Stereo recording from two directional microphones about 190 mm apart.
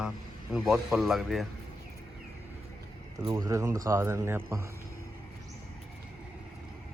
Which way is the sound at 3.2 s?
20° right (ahead or behind).